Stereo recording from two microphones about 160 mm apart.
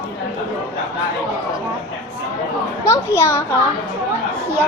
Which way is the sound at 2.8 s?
20° left (ahead or behind).